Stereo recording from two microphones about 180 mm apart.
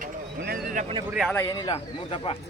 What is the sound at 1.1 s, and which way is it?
Speech, centre (ahead or behind).